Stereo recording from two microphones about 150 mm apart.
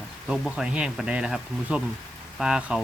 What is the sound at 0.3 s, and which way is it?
Speech, 5° right (ahead or behind).